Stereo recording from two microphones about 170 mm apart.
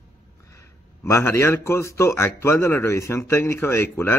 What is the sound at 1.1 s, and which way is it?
A man's voice, 15° left (ahead or behind).